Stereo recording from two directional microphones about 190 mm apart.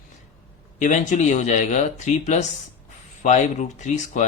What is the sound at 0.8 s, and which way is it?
Speech, 40° left (ahead or behind).